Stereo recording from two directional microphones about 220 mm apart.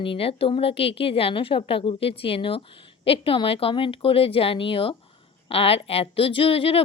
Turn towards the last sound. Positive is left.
turn(degrees=25)  # may be behind; listen again after turning